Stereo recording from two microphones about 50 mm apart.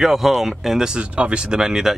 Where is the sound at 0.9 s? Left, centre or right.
Right.